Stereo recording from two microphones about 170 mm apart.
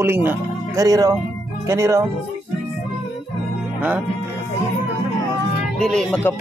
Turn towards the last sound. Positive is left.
turn(degrees=5)  # may be behind; listen again after turning